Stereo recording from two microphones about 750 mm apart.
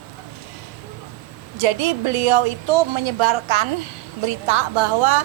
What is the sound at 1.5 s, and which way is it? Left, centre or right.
A woman's voice, right.